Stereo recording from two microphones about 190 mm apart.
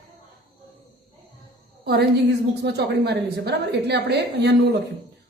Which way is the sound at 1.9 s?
60° right (ahead or behind).